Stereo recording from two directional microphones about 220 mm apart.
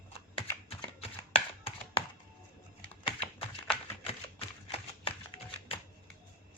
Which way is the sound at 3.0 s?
25° left (ahead or behind).